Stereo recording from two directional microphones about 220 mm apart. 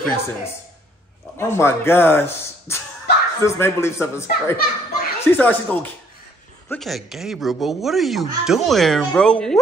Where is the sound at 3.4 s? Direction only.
10° left (ahead or behind).